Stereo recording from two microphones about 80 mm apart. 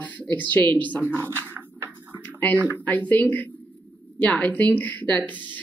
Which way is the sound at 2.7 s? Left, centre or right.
Left.